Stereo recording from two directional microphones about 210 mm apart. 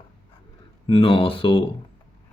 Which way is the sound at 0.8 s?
25° left (ahead or behind).